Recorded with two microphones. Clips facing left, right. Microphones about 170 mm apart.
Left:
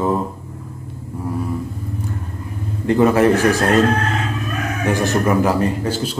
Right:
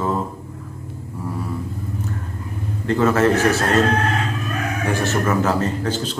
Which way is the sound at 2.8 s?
15° left (ahead or behind).